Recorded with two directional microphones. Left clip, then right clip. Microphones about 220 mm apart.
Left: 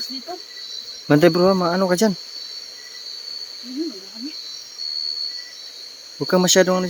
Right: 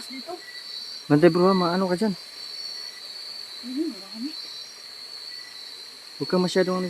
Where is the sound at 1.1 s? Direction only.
25° left (ahead or behind).